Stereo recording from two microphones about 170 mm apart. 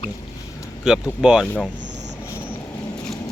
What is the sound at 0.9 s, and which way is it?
Speech, 5° right (ahead or behind).